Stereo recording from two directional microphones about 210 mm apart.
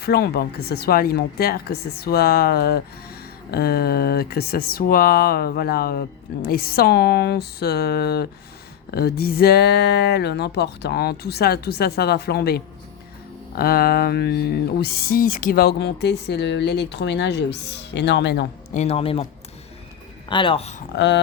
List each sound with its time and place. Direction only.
0.0 s speech: 45° left (ahead or behind)
18.7 s speech: 30° left (ahead or behind)
20.3 s speech: 25° left (ahead or behind)
20.9 s speech: 55° left (ahead or behind)